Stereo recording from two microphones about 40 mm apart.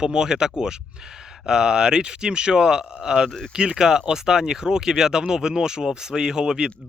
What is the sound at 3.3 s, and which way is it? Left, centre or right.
Speech, left.